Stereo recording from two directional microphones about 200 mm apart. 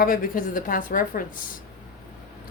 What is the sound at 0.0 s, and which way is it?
Speech, 45° left (ahead or behind).